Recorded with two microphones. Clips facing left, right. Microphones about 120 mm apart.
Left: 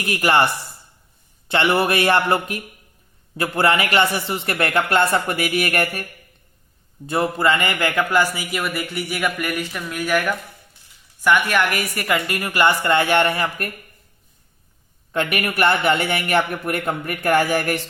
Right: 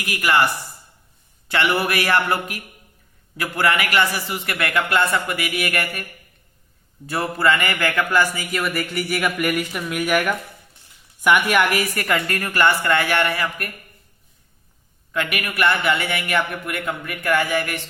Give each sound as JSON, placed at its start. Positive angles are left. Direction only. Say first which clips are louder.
{"t": 0.0, "sound": "a man's voice", "louder": "left 2 dB", "side_deg": 30}
{"t": 7.1, "sound": "a man's voice", "louder": "left 1 dB", "side_deg": 20}
{"t": 8.6, "sound": "a woman's voice", "louder": "right 1 dB", "side_deg": 0}
{"t": 15.1, "sound": "a man's voice", "louder": "left 3 dB", "side_deg": 30}